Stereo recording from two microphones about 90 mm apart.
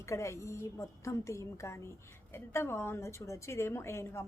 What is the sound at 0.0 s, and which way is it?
A woman's voice, 35° left (ahead or behind).